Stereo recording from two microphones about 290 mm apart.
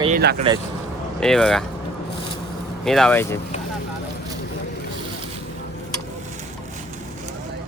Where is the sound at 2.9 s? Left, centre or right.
Centre.